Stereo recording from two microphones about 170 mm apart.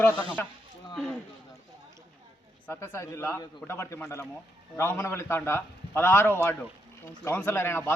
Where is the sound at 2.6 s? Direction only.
15° left (ahead or behind).